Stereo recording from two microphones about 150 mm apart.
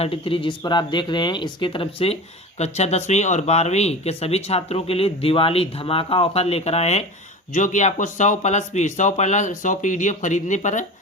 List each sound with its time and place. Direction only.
0.0 s speech: 40° left (ahead or behind)
7.5 s speech: 55° left (ahead or behind)